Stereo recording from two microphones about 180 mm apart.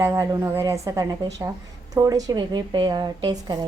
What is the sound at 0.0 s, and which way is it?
A woman's voice, 15° right (ahead or behind).